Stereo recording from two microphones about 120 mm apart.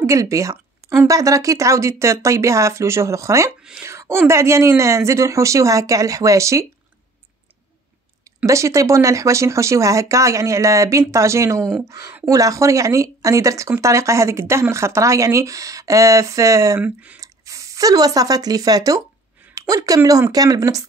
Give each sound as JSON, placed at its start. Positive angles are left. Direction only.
{"t": 0.0, "sound": "a sound", "side_deg": -25}
{"t": 1.0, "sound": "speech", "side_deg": -25}
{"t": 8.5, "sound": "speech", "side_deg": -25}
{"t": 16.8, "sound": "speech", "side_deg": -10}
{"t": 17.2, "sound": "speech", "side_deg": -25}